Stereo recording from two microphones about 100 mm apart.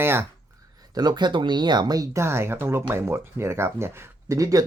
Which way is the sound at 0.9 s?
45° right (ahead or behind).